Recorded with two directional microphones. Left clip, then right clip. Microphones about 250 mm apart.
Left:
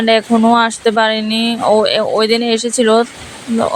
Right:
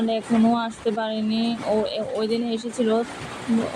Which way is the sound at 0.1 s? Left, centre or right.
Left.